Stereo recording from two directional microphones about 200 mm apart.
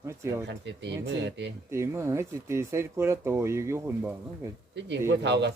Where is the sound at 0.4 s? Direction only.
60° right (ahead or behind).